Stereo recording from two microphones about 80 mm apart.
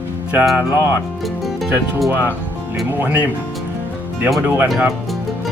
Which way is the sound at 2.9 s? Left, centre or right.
Right.